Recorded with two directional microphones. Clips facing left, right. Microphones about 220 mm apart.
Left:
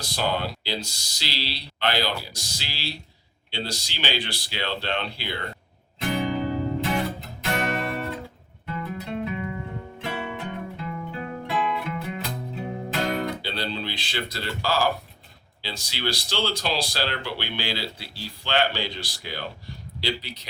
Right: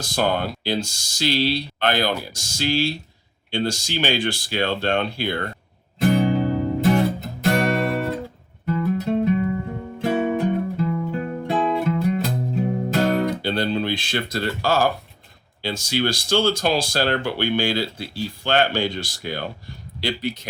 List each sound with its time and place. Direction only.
0.0 s speech: 50° right (ahead or behind)
6.0 s music: 45° right (ahead or behind)
15.6 s speech: 50° right (ahead or behind)